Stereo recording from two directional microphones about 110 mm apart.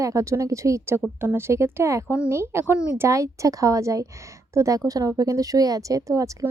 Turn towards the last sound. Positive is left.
turn(degrees=-30)  # may be behind; listen again after turning